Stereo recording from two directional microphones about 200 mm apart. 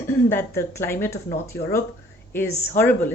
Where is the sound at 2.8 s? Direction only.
10° left (ahead or behind).